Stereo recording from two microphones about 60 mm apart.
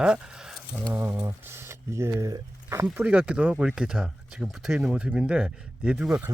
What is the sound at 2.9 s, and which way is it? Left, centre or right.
Speech, right.